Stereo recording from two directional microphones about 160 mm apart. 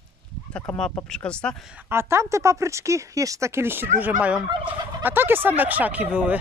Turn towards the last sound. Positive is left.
turn(degrees=-10)  # may be behind; listen again after turning